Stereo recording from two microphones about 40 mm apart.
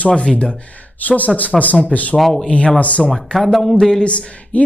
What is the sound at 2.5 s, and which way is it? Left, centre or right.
Speech, left.